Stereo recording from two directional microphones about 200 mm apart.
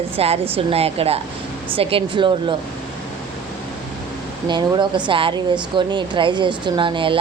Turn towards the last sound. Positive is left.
turn(degrees=-25)  # may be behind; listen again after turning